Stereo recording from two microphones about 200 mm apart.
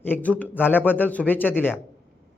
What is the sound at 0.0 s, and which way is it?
A man's voice, 10° left (ahead or behind).